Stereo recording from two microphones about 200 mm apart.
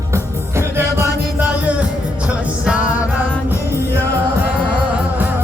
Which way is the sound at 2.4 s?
5° right (ahead or behind).